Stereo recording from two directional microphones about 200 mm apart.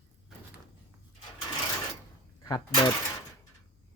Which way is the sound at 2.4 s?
20° left (ahead or behind).